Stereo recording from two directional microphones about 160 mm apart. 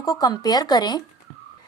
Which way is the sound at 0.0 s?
25° left (ahead or behind).